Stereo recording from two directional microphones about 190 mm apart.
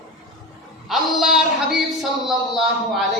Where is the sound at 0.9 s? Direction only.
Centre (ahead or behind).